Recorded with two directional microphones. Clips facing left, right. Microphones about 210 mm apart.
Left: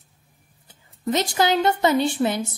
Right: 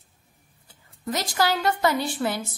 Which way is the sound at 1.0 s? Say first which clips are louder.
Left 4 dB; 25° left (ahead or behind).